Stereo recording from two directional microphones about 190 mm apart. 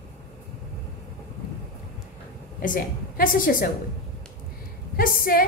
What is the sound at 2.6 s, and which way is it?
A woman's voice, 45° left (ahead or behind).